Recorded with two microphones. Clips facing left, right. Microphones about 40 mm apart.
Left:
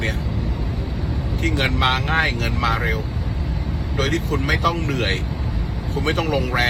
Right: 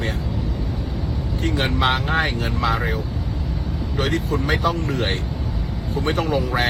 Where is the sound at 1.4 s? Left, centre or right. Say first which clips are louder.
Left 1 dB; left.